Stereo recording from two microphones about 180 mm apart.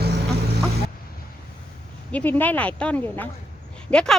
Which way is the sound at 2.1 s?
10° left (ahead or behind).